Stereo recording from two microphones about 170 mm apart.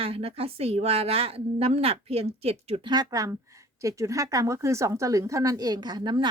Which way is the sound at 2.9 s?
25° right (ahead or behind).